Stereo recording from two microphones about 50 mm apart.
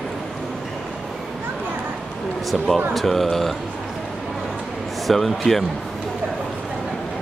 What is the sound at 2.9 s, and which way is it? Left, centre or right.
Speech, centre.